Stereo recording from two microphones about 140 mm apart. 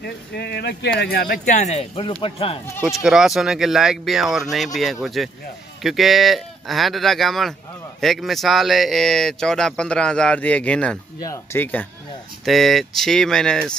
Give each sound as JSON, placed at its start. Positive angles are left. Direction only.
{"t": 1.0, "sound": "speech", "side_deg": 90}
{"t": 2.8, "sound": "speech", "side_deg": 0}
{"t": 11.1, "sound": "speech", "side_deg": 25}
{"t": 12.4, "sound": "speech", "side_deg": 0}